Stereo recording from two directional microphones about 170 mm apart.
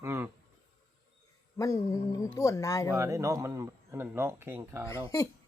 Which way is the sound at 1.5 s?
20° left (ahead or behind).